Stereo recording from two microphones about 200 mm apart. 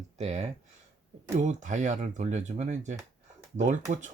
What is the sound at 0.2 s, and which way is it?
Speech, 35° right (ahead or behind).